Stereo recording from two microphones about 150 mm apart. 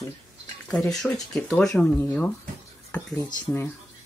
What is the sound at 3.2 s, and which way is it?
Speech, 20° left (ahead or behind).